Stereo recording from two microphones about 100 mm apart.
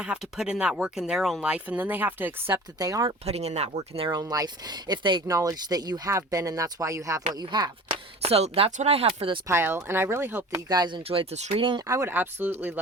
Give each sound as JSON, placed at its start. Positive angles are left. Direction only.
{"t": 0.0, "sound": "speech", "side_deg": -5}
{"t": 2.5, "sound": "speech", "side_deg": -40}
{"t": 3.2, "sound": "speech", "side_deg": -90}
{"t": 4.1, "sound": "speech", "side_deg": -40}
{"t": 5.3, "sound": "speech", "side_deg": -35}
{"t": 7.3, "sound": "speech", "side_deg": -45}
{"t": 8.2, "sound": "speech", "side_deg": -85}
{"t": 9.5, "sound": "speech", "side_deg": -25}
{"t": 10.7, "sound": "speech", "side_deg": -45}
{"t": 11.9, "sound": "speech", "side_deg": -30}